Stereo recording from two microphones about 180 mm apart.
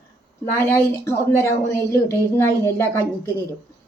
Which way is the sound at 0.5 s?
15° left (ahead or behind).